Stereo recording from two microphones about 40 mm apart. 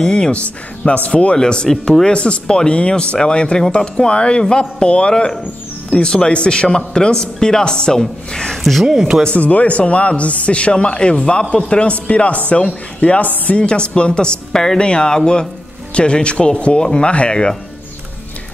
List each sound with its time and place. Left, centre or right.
0.0 s a man's voice: left
0.9 s a man's voice: left
1.3 s a man's voice: left
1.7 s speech: centre
2.0 s a man's voice: left
9.4 s a man's voice: left